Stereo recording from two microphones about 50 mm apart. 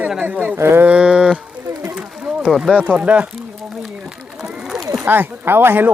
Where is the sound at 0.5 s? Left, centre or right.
Right.